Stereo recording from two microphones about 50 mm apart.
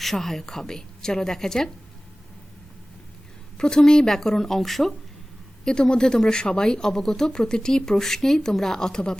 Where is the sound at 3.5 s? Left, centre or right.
Centre.